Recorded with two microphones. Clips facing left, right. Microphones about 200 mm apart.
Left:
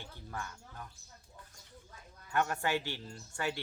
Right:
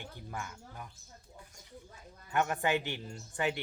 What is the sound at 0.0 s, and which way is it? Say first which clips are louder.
Speech: right 1 dB; 15° right (ahead or behind).